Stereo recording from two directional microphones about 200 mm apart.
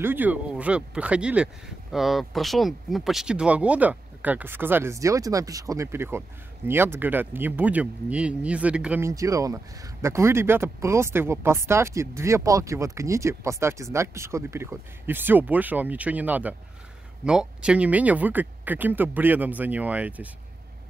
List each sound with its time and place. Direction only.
0.0 s speech: 10° right (ahead or behind)